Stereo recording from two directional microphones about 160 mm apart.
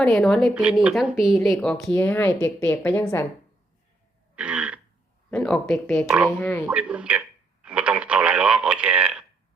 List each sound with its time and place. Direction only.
0.0 s speech: 5° left (ahead or behind)
4.4 s throat clearing: 10° right (ahead or behind)
5.3 s speech: 5° left (ahead or behind)
6.1 s speech: 10° right (ahead or behind)
6.4 s speech: 10° left (ahead or behind)
6.7 s speech: 10° right (ahead or behind)